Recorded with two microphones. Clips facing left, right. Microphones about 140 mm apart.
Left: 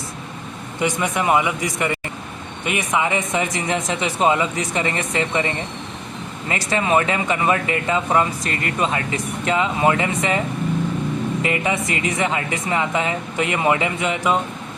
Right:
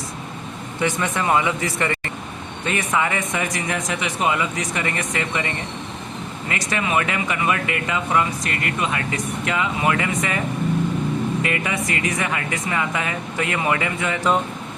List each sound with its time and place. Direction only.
0.8 s speech: 15° left (ahead or behind)
6.5 s speech: 30° left (ahead or behind)
11.4 s speech: 25° left (ahead or behind)